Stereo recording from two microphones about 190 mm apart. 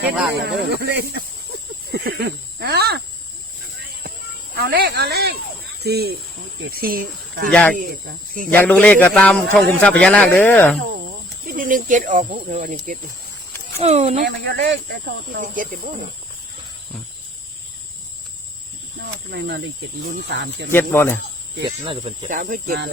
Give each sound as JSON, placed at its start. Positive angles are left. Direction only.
{"t": 0.4, "sound": "speech", "side_deg": -60}
{"t": 4.5, "sound": "speech", "side_deg": -55}
{"t": 7.5, "sound": "speech", "side_deg": 5}
{"t": 7.8, "sound": "speech", "side_deg": -50}
{"t": 8.5, "sound": "a man's voice", "side_deg": 10}
{"t": 11.4, "sound": "speech", "side_deg": -45}
{"t": 14.3, "sound": "speech", "side_deg": -60}
{"t": 15.4, "sound": "speech", "side_deg": -45}
{"t": 19.3, "sound": "speech", "side_deg": -65}
{"t": 20.7, "sound": "a man's voice", "side_deg": 10}
{"t": 22.3, "sound": "speech", "side_deg": -45}